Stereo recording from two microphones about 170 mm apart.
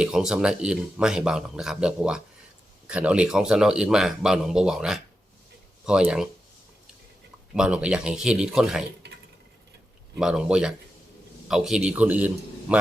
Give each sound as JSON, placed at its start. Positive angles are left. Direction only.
{"t": 0.0, "sound": "speech", "side_deg": -5}
{"t": 7.5, "sound": "speech", "side_deg": -5}
{"t": 9.0, "sound": "a sound", "side_deg": -75}
{"t": 10.2, "sound": "a man's voice", "side_deg": -5}